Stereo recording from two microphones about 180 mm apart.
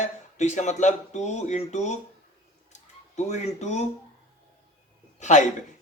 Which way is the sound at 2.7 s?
40° left (ahead or behind).